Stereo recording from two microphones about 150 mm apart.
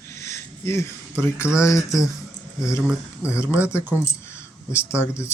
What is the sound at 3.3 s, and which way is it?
Speech, 15° left (ahead or behind).